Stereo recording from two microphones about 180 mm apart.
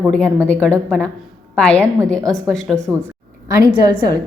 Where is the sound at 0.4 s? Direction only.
10° left (ahead or behind).